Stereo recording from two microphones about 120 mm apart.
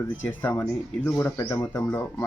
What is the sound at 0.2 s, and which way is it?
Speech, 15° left (ahead or behind).